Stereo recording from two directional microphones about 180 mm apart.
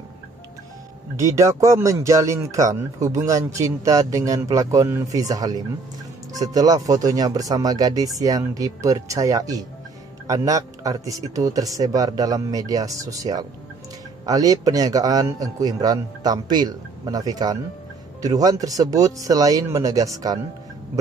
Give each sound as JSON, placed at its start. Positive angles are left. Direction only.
{"t": 1.3, "sound": "speech", "side_deg": -15}